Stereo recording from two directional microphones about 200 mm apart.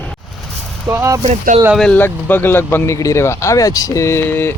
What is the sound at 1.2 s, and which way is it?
Speech, 35° right (ahead or behind).